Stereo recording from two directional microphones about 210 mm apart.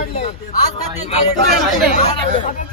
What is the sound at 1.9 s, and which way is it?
Speech, 35° left (ahead or behind).